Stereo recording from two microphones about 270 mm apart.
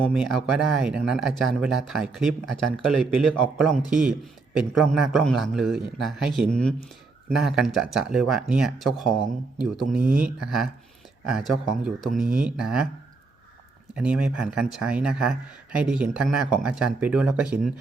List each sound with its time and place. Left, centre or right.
0.0 s speech: centre
13.9 s speech: centre